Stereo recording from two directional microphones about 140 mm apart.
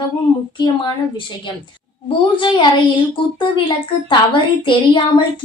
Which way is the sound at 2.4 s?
35° left (ahead or behind).